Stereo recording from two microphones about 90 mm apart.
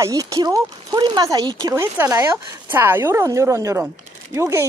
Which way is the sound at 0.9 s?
55° right (ahead or behind).